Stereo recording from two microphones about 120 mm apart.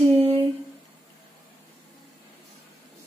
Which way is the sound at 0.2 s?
55° right (ahead or behind).